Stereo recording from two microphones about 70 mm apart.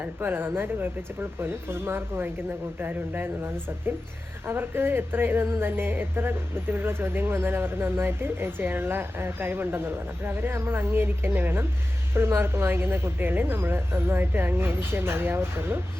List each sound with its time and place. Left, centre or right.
0.0 s a woman's voice: right